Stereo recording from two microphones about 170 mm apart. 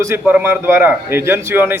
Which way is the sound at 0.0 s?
15° right (ahead or behind).